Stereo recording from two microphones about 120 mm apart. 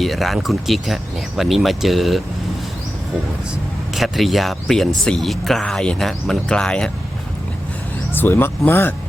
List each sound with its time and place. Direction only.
0.0 s speech: centre (ahead or behind)
3.9 s speech: centre (ahead or behind)
8.1 s speech: 15° left (ahead or behind)